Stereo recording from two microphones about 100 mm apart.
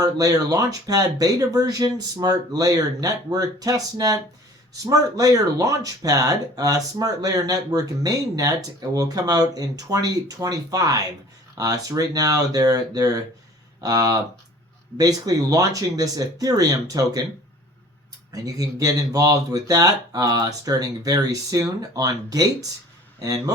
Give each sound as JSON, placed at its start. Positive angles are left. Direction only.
{"t": 0.0, "sound": "speech", "side_deg": -35}
{"t": 18.3, "sound": "speech", "side_deg": -35}